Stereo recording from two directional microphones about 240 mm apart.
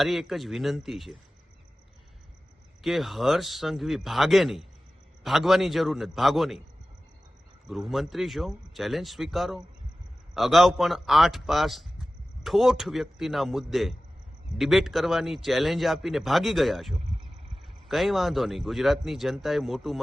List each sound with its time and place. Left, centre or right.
0.0 s a man's voice: centre
2.8 s a man's voice: centre
7.7 s a man's voice: centre
17.0 s a sound: right
17.8 s a man's voice: centre